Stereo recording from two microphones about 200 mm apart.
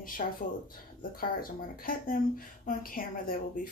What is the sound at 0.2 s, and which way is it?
A woman's voice, 40° left (ahead or behind).